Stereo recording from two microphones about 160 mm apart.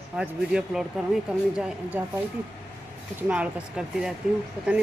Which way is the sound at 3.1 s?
10° right (ahead or behind).